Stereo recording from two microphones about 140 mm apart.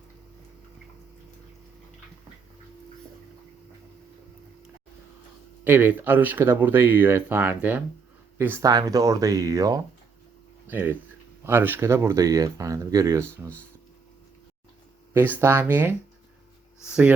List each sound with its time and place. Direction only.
5.6 s speech: 15° right (ahead or behind)
8.6 s speech: 25° right (ahead or behind)
15.1 s speech: 15° right (ahead or behind)